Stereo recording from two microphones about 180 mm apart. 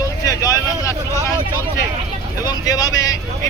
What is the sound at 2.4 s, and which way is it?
Speech, 20° left (ahead or behind).